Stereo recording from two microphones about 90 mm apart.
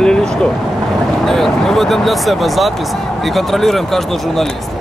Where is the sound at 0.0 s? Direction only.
10° left (ahead or behind).